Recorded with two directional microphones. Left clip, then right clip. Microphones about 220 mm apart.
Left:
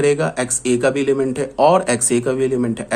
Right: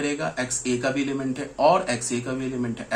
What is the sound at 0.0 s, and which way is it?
Speech, 50° left (ahead or behind).